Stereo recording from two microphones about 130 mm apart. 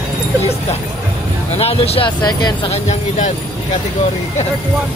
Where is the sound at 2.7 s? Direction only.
60° left (ahead or behind).